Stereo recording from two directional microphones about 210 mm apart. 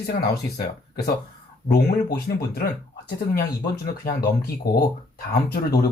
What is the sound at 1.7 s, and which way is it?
Speech, 50° left (ahead or behind).